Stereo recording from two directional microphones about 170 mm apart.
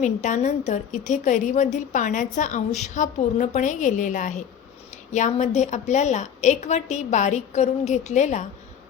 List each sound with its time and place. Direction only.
0.0 s a woman's voice: 45° left (ahead or behind)